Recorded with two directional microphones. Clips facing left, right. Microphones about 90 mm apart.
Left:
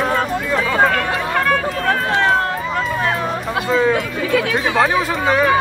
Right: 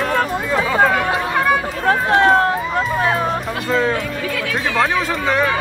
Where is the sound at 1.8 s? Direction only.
20° right (ahead or behind).